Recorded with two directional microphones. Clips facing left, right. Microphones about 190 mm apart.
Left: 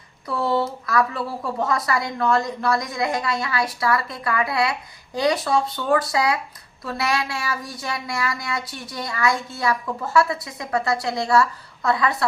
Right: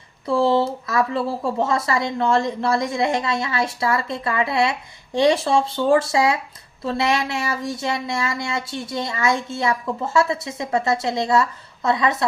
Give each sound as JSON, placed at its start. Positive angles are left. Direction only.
{"t": 0.3, "sound": "speech", "side_deg": -25}